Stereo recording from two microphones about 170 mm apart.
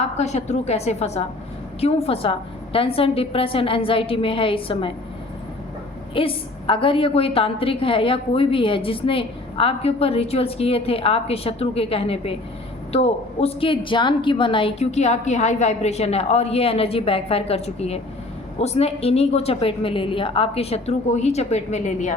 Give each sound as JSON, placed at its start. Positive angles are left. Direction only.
{"t": 0.0, "sound": "a woman's voice", "side_deg": 40}
{"t": 6.1, "sound": "a woman's voice", "side_deg": 30}